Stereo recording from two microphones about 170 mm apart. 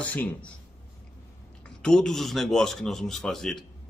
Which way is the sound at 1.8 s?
5° left (ahead or behind).